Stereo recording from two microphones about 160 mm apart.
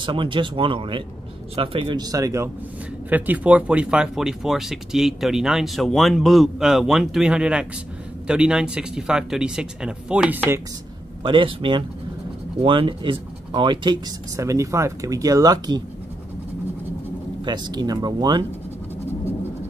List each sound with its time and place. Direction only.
0.0 s speech: 30° right (ahead or behind); by 10.6 s 10° right (ahead or behind)
11.2 s speech: 30° right (ahead or behind)
17.5 s speech: 25° right (ahead or behind)